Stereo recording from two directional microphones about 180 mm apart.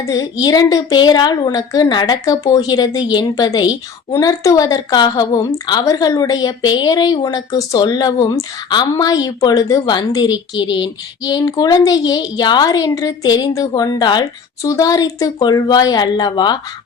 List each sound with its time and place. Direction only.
0.0 s a woman's voice: 20° left (ahead or behind)